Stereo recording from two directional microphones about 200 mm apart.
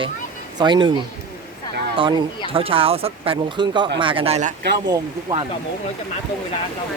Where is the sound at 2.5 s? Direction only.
25° right (ahead or behind).